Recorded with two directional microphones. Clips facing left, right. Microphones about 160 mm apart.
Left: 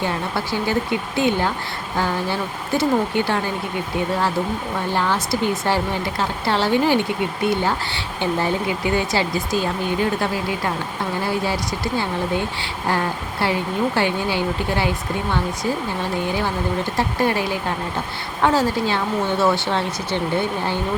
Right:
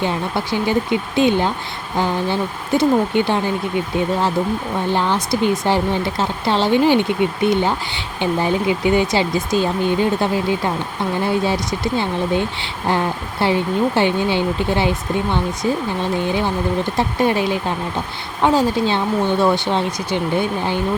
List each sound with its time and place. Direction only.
0.0 s speech: 20° right (ahead or behind)
4.9 s speech: 20° right (ahead or behind)